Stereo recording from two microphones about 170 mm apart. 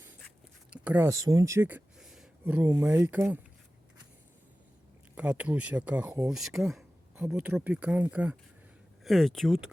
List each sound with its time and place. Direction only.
0.7 s a sound: 5° right (ahead or behind)
1.0 s speech: 20° right (ahead or behind)
5.1 s speech: 5° right (ahead or behind)